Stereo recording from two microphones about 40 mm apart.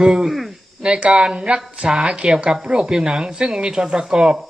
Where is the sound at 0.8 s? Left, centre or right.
Right.